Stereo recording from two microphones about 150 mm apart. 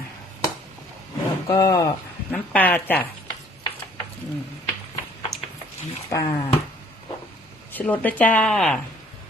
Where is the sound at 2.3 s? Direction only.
10° left (ahead or behind).